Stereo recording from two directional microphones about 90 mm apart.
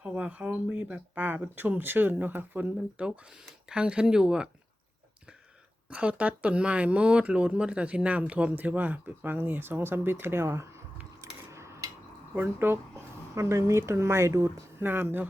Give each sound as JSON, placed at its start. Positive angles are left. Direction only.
{"t": 0.0, "sound": "speech", "side_deg": -15}
{"t": 3.7, "sound": "speech", "side_deg": -10}
{"t": 5.9, "sound": "speech", "side_deg": -15}
{"t": 11.2, "sound": "a sound", "side_deg": -30}
{"t": 12.3, "sound": "speech", "side_deg": -25}